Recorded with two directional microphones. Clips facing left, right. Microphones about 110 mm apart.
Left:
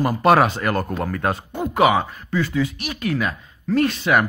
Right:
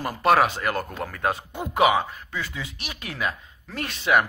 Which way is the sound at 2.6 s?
20° right (ahead or behind).